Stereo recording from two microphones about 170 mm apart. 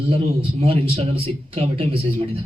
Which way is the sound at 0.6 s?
35° right (ahead or behind).